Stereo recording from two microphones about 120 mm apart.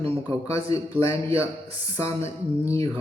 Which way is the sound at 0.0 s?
50° right (ahead or behind).